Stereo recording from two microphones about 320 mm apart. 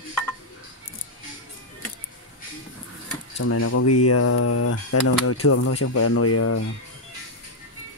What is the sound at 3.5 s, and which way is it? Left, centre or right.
Speech, left.